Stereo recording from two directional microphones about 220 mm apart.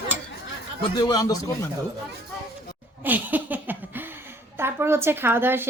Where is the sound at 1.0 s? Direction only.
15° left (ahead or behind).